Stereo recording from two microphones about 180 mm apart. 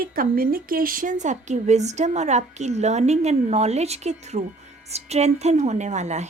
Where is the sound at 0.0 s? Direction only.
55° right (ahead or behind).